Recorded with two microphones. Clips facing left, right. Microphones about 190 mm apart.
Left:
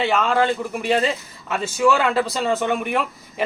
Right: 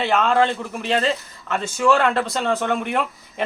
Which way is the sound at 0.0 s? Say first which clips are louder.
Right 1 dB; centre (ahead or behind).